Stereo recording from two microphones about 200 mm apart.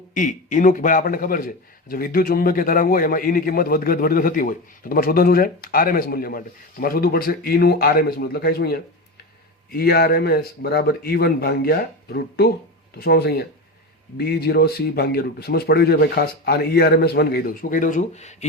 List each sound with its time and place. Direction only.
0.1 s a man's voice: 40° left (ahead or behind)